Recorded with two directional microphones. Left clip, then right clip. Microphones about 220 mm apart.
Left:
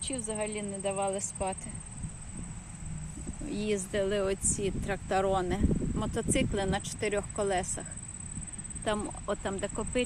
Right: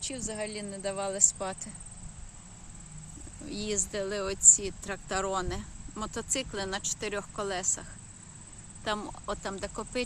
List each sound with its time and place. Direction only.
0.0 s speech: 15° right (ahead or behind)
3.5 s speech: 5° right (ahead or behind)